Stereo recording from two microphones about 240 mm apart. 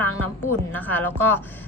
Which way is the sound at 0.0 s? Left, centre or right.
Centre.